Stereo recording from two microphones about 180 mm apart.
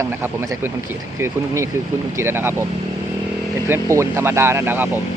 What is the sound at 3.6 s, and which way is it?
Speech, 15° right (ahead or behind).